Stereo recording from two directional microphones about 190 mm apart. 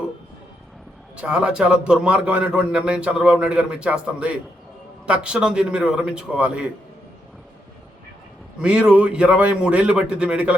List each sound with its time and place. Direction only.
1.1 s a man's voice: 5° right (ahead or behind)
8.5 s a man's voice: 5° right (ahead or behind)